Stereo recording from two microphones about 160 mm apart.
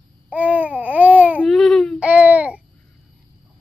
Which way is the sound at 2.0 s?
10° right (ahead or behind).